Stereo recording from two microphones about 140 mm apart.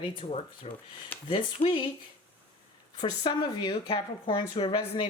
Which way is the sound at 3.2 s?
30° left (ahead or behind).